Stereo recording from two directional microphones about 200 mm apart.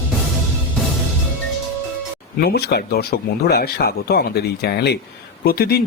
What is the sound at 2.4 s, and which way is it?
Speech, 50° left (ahead or behind).